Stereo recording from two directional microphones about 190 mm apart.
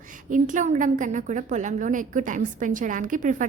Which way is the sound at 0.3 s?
40° right (ahead or behind).